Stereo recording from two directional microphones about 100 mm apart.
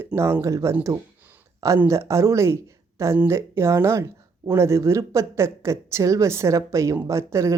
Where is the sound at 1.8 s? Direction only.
30° right (ahead or behind).